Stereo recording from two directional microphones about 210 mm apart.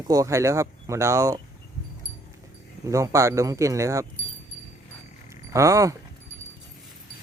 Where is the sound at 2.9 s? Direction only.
15° right (ahead or behind).